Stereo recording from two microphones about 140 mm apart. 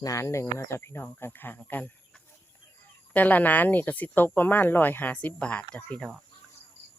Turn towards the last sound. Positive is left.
turn(degrees=0)  # may be behind; listen again after turning